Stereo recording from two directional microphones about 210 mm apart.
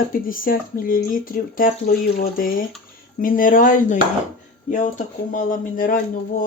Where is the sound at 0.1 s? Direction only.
40° left (ahead or behind).